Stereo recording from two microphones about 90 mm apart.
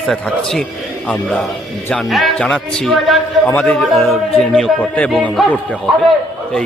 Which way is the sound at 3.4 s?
15° left (ahead or behind).